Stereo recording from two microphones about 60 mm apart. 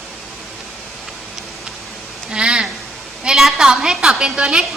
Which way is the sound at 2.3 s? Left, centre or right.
Centre.